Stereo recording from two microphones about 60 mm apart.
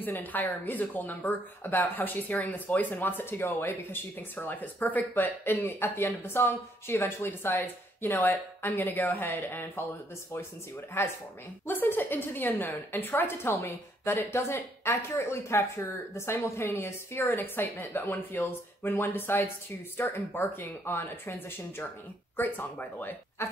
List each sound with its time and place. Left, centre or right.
0.2 s speech: left
11.0 s speech: left
23.4 s speech: left